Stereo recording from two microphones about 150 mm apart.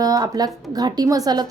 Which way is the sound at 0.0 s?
25° right (ahead or behind).